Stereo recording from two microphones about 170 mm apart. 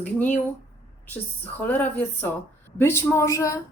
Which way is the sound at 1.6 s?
10° left (ahead or behind).